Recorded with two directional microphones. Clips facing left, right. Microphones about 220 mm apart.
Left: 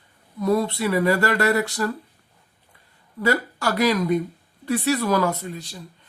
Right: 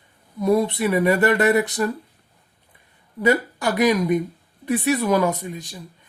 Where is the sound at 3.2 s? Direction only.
15° right (ahead or behind).